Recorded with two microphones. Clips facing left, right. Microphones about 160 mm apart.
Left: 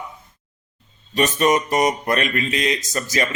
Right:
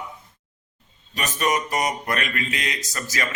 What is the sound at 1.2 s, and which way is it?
Speech, 25° left (ahead or behind).